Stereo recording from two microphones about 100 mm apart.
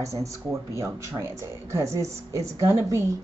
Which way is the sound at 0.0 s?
35° right (ahead or behind).